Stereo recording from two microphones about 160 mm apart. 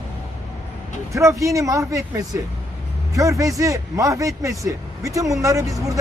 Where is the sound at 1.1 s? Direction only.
20° right (ahead or behind).